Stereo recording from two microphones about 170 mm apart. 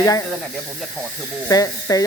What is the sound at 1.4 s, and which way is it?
Speech, 20° left (ahead or behind).